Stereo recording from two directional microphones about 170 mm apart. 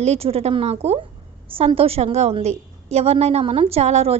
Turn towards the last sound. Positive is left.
turn(degrees=-40)  # may be behind; listen again after turning